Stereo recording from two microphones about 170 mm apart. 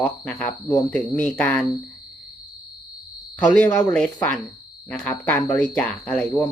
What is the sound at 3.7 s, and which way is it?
Speech, 20° left (ahead or behind).